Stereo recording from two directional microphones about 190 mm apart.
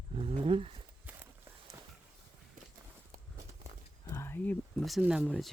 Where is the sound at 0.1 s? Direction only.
30° right (ahead or behind).